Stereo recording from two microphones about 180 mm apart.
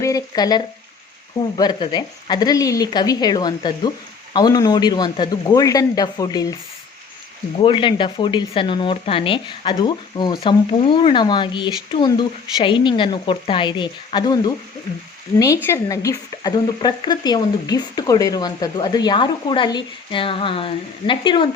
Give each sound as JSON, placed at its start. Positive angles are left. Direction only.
{"t": 0.0, "sound": "speech", "side_deg": 20}
{"t": 7.6, "sound": "speech", "side_deg": 30}